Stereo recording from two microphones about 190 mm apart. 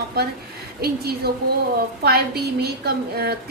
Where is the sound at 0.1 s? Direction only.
55° right (ahead or behind).